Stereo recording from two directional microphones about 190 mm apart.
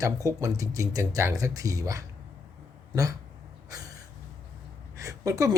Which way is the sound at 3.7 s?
20° right (ahead or behind).